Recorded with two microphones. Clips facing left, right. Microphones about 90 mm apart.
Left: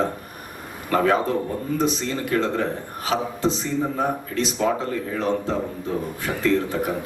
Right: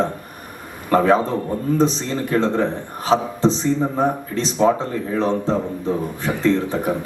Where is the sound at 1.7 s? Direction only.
30° right (ahead or behind).